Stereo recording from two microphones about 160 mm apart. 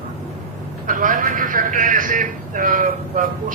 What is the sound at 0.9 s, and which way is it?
A man's voice, 55° right (ahead or behind).